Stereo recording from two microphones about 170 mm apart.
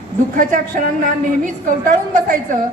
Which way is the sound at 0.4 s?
50° right (ahead or behind).